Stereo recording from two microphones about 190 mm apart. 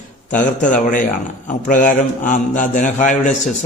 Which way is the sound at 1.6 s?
45° left (ahead or behind).